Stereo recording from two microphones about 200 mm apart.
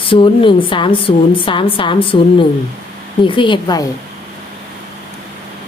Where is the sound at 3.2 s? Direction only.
25° left (ahead or behind).